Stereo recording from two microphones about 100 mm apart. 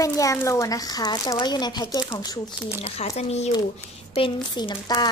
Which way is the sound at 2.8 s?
90° left.